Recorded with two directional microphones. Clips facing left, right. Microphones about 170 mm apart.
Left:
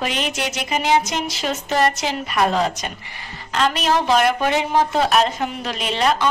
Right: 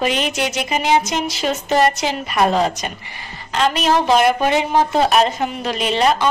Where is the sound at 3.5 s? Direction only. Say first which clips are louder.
Right 2 dB; centre (ahead or behind).